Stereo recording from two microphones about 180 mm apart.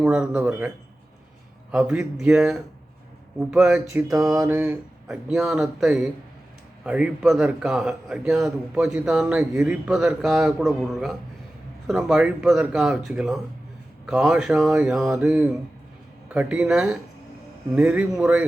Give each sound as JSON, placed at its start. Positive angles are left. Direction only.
{"t": 0.0, "sound": "a man's voice", "side_deg": -5}
{"t": 1.7, "sound": "a man's voice", "side_deg": -5}